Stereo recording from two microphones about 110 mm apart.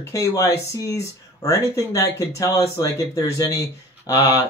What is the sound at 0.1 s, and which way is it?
Speech, 30° left (ahead or behind).